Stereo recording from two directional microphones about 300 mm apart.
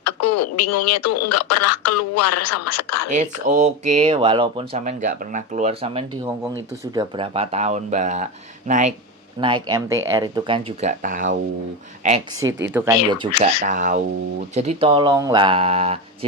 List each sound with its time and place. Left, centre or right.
0.0 s speech: left
3.1 s speech: right
9.6 s speech: centre
12.5 s speech: right
12.7 s speech: centre